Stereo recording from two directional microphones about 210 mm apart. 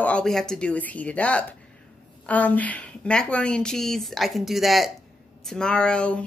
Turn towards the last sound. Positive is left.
turn(degrees=5)  # may be behind; listen again after turning